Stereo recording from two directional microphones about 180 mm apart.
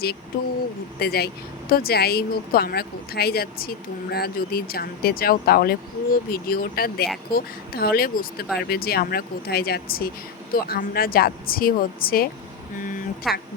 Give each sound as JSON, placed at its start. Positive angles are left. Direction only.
{"t": 0.9, "sound": "speech", "side_deg": 60}
{"t": 13.2, "sound": "a woman's voice", "side_deg": 0}